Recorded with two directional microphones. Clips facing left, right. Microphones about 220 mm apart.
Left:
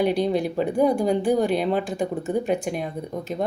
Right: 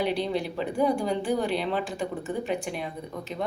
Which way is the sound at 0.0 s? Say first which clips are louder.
Left 6 dB; 45° left (ahead or behind).